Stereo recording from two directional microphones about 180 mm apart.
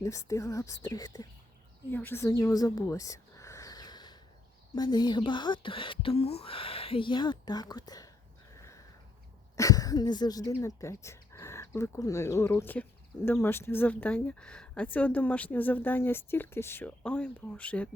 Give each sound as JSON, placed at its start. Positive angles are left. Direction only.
{"t": 0.0, "sound": "speech", "side_deg": 20}
{"t": 1.9, "sound": "a sound", "side_deg": 10}
{"t": 4.7, "sound": "speech", "side_deg": 25}
{"t": 9.6, "sound": "speech", "side_deg": 20}